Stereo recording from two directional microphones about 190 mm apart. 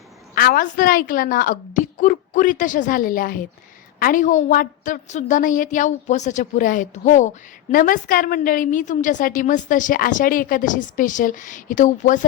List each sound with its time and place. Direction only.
0.3 s a woman's voice: 50° left (ahead or behind)